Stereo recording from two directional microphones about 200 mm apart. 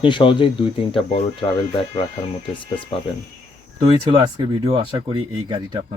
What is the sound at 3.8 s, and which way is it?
Speech, 25° right (ahead or behind).